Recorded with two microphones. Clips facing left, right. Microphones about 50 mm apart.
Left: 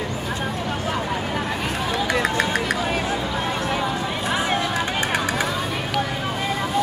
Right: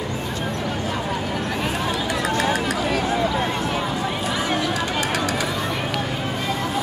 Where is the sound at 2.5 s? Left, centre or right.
Left.